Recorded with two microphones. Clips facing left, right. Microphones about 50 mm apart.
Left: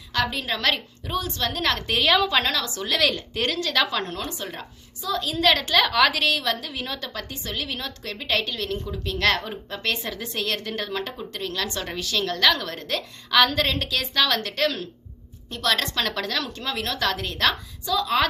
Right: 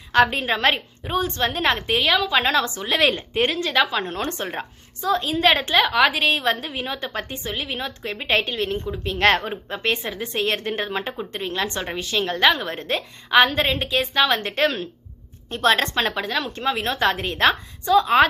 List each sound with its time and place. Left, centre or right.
0.1 s a woman's voice: right
2.0 s a woman's voice: centre
2.4 s a woman's voice: right
4.2 s a woman's voice: right
5.8 s a woman's voice: centre
7.1 s a woman's voice: right; by 16.5 s centre
16.5 s a woman's voice: right